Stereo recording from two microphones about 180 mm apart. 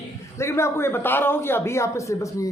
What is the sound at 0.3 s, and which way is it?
Speech, 15° left (ahead or behind).